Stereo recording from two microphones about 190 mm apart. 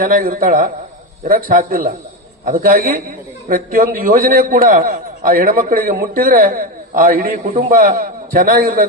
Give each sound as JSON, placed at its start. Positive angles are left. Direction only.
{"t": 0.0, "sound": "a man's voice", "side_deg": -50}